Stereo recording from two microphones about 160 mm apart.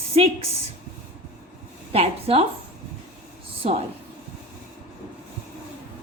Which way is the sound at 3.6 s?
40° right (ahead or behind).